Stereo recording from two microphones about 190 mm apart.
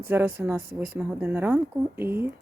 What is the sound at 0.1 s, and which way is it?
Speech, 10° right (ahead or behind).